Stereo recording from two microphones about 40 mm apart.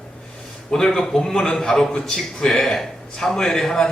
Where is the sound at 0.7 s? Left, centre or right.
Centre.